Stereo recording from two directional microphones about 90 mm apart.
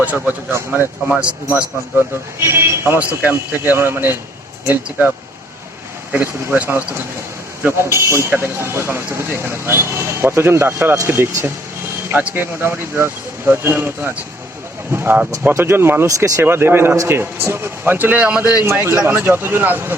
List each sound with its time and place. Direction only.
0.0 s speech: 15° right (ahead or behind)
2.4 s speech: 30° right (ahead or behind)
15.4 s speech: 25° right (ahead or behind)
16.0 s speech: 40° right (ahead or behind)
16.4 s speech: 25° right (ahead or behind)
18.6 s speech: 30° right (ahead or behind)